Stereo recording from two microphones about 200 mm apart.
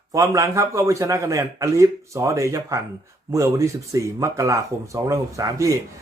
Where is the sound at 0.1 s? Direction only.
15° right (ahead or behind).